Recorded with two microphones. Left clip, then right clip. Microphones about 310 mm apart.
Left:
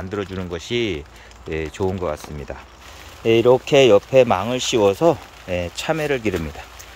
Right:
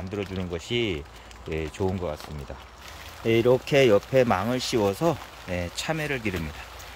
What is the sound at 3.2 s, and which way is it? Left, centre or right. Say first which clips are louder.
Speech: left 7 dB; centre.